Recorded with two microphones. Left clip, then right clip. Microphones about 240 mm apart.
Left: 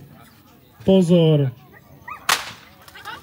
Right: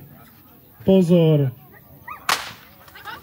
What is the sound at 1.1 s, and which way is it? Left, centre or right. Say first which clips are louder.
Speech: left 1 dB; left.